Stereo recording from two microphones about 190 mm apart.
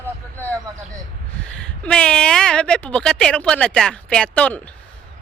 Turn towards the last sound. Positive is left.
turn(degrees=5)  # may be behind; listen again after turning